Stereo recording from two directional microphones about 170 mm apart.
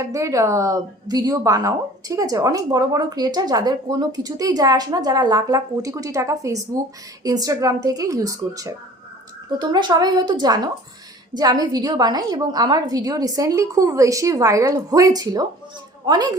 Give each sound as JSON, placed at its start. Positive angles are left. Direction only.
{"t": 0.0, "sound": "a woman's voice", "side_deg": -20}